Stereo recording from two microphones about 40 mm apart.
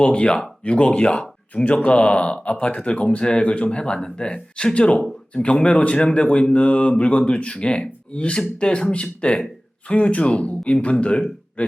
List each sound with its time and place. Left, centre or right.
0.0 s speech: left